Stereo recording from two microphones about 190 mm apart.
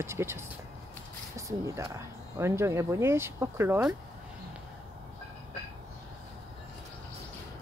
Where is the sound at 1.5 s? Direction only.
15° right (ahead or behind).